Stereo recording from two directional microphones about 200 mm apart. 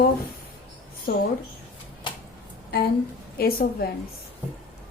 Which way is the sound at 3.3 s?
50° left (ahead or behind).